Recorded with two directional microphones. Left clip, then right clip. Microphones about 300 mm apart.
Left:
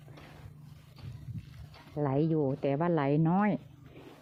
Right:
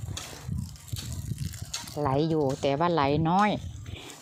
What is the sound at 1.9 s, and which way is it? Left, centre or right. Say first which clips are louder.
Speech: right 4 dB; centre.